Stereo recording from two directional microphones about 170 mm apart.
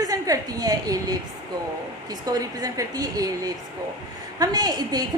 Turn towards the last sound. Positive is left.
turn(degrees=-25)  # may be behind; listen again after turning